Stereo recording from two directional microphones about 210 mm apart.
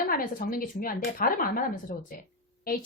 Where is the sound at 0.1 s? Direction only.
45° left (ahead or behind).